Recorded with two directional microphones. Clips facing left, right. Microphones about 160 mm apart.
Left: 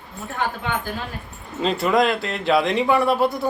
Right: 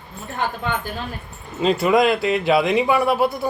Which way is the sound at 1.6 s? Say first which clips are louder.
Right 2 dB; 5° right (ahead or behind).